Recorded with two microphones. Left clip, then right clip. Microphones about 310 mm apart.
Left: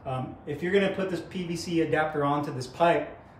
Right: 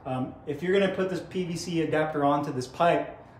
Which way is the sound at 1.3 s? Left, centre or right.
Centre.